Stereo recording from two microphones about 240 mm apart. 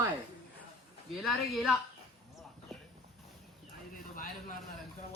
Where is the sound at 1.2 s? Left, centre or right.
Centre.